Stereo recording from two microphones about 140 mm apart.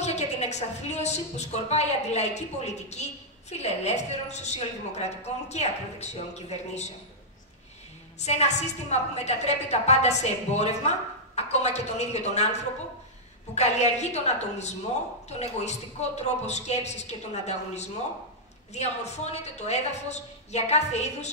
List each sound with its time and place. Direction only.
0.0 s a woman's voice: 50° left (ahead or behind)
8.2 s a woman's voice: 55° left (ahead or behind)